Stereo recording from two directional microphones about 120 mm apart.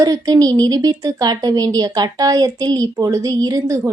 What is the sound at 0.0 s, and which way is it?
A woman's voice, 30° right (ahead or behind).